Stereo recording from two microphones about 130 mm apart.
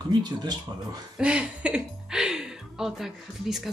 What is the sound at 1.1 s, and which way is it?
Speech, 10° right (ahead or behind).